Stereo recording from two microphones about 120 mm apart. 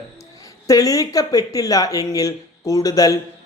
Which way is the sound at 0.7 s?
30° left (ahead or behind).